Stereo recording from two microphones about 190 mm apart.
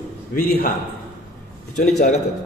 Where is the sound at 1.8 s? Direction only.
35° left (ahead or behind).